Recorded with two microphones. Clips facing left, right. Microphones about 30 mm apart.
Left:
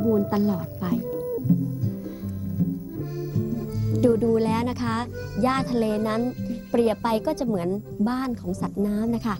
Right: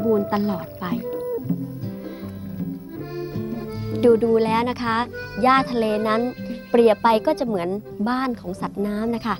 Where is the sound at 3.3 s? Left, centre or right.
Right.